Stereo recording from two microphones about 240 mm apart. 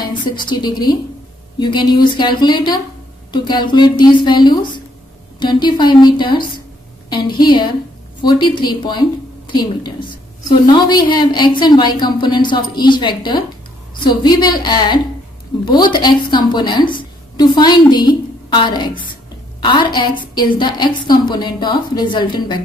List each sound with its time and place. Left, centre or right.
0.0 s a woman's voice: centre